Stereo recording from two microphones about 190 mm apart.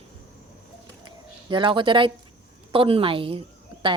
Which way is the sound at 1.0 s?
25° right (ahead or behind).